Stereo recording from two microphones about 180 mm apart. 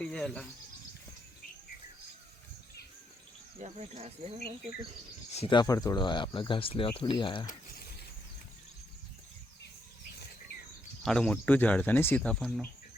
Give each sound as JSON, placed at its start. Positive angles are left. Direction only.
{"t": 0.0, "sound": "cricket", "side_deg": 5}
{"t": 3.6, "sound": "speech", "side_deg": -35}
{"t": 5.3, "sound": "speech", "side_deg": 30}
{"t": 11.0, "sound": "speech", "side_deg": 5}